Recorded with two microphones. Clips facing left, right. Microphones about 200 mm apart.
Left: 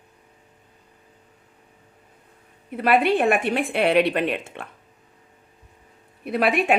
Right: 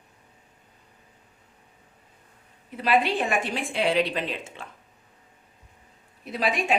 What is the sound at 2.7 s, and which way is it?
A woman's voice, 55° left (ahead or behind).